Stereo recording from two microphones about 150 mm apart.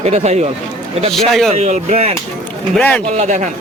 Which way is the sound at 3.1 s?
50° right (ahead or behind).